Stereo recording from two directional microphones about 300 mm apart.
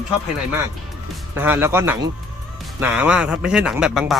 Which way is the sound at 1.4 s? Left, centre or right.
Centre.